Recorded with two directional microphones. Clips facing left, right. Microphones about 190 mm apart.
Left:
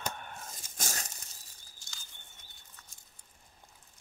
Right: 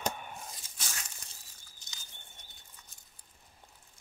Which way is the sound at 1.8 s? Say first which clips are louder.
Left 1 dB; 20° right (ahead or behind).